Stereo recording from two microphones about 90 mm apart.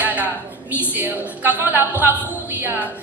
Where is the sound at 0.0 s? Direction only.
20° right (ahead or behind).